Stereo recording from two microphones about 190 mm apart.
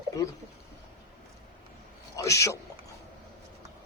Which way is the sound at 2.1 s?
15° left (ahead or behind).